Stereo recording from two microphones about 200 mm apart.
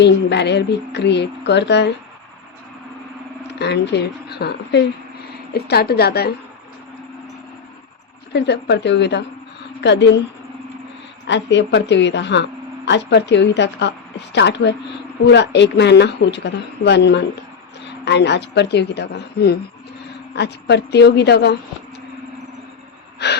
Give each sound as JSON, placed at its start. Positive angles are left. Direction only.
{"t": 0.0, "sound": "a woman's voice", "side_deg": 60}
{"t": 3.6, "sound": "a woman's voice", "side_deg": 55}
{"t": 8.3, "sound": "a woman's voice", "side_deg": 60}
{"t": 11.3, "sound": "a woman's voice", "side_deg": 60}
{"t": 23.2, "sound": "wheeze", "side_deg": 55}